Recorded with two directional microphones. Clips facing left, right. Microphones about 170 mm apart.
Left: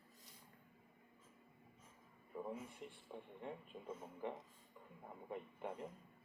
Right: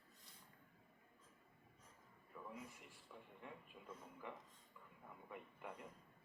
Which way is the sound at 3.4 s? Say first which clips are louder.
Left 8 dB; 30° left (ahead or behind).